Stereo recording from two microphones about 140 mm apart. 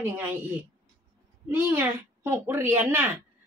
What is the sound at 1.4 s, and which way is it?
A woman's voice, 15° right (ahead or behind).